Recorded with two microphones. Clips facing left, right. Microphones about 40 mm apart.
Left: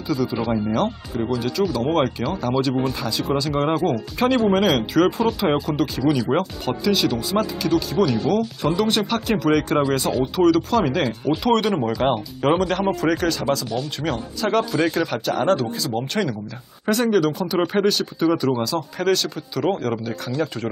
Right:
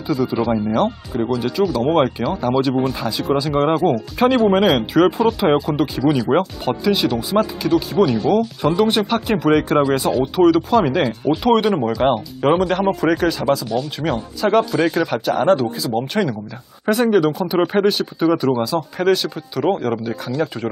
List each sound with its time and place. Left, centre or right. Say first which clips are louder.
0.1 s speech: right 4 dB; centre